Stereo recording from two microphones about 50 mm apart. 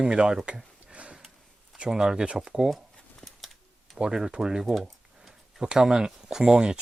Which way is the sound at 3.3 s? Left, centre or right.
Centre.